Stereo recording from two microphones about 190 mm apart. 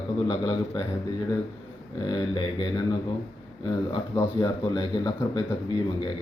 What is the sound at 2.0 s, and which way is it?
Speech, 25° left (ahead or behind).